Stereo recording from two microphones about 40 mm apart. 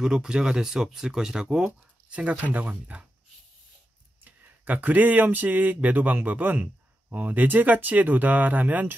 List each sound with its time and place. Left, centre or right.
0.0 s speech: centre
2.0 s speech: right
4.2 s speech: right